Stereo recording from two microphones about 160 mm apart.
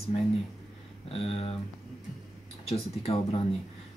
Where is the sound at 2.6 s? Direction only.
40° left (ahead or behind).